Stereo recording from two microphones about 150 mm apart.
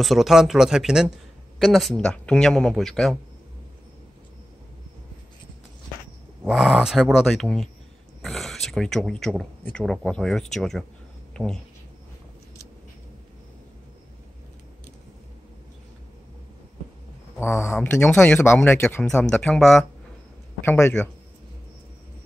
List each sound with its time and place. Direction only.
0.0 s speech: centre (ahead or behind)
6.4 s speech: centre (ahead or behind)
17.4 s speech: 15° left (ahead or behind)
17.7 s speech: 5° left (ahead or behind)
20.6 s speech: 15° left (ahead or behind)